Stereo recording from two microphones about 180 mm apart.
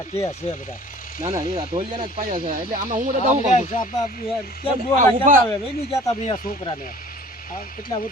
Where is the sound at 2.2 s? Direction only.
50° right (ahead or behind).